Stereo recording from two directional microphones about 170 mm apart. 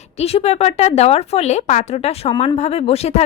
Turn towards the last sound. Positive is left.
turn(degrees=40)  # may be behind; listen again after turning